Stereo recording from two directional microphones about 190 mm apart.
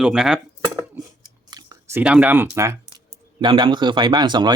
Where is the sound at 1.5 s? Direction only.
20° right (ahead or behind).